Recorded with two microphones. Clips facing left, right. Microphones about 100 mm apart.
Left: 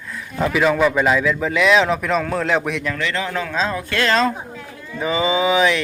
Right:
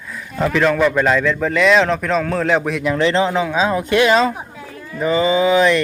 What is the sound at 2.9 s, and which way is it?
Speech, 30° right (ahead or behind).